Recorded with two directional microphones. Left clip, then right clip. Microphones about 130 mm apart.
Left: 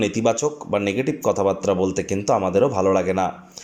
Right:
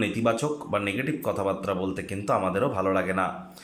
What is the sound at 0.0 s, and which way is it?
Speech, 25° left (ahead or behind).